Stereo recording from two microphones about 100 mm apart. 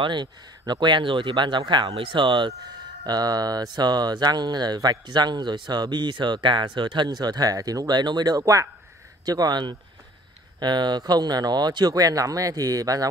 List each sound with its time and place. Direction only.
0.0 s speech: 50° right (ahead or behind)
3.0 s speech: 40° right (ahead or behind)